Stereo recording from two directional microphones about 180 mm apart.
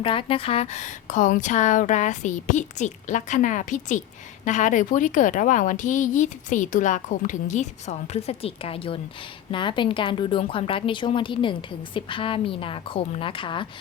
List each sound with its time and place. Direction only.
0.0 s a woman's voice: 30° left (ahead or behind)